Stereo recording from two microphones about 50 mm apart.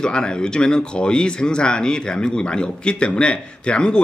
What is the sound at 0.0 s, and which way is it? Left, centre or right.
Speech, centre.